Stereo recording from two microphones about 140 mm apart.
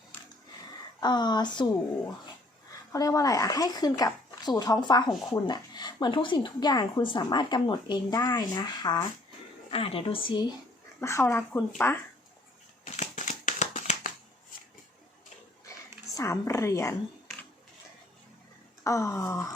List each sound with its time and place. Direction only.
0.9 s a woman's voice: 30° left (ahead or behind)
2.9 s speech: 25° left (ahead or behind)
9.6 s a woman's voice: 40° left (ahead or behind)
11.0 s speech: 20° left (ahead or behind)
12.8 s a sound: 60° left (ahead or behind)
16.1 s speech: 20° left (ahead or behind)
18.8 s speech: 20° left (ahead or behind)